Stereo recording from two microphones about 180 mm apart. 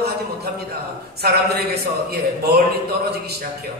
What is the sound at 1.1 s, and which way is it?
A man's voice, 60° right (ahead or behind).